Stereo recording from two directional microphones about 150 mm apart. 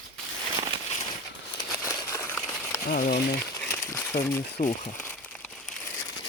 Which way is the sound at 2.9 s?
70° left (ahead or behind).